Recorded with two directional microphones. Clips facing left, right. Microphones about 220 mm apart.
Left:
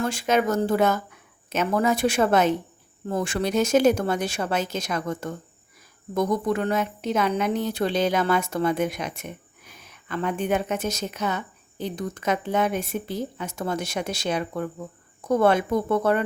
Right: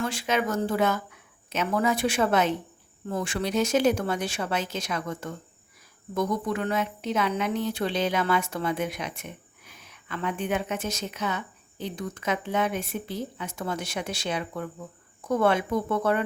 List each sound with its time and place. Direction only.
0.0 s a woman's voice: 45° left (ahead or behind)